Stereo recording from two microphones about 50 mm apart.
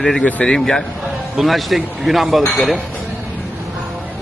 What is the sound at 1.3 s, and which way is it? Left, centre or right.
A man's voice, centre.